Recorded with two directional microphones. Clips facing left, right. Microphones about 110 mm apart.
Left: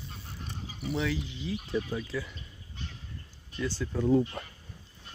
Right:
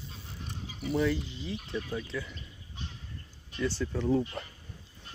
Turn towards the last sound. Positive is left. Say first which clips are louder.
# left 3 dB
turn(degrees=5)  # may be behind; listen again after turning